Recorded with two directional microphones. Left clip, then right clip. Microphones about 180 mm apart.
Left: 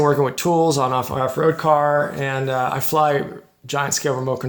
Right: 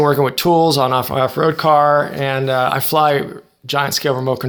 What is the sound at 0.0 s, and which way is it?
Speech, 35° right (ahead or behind).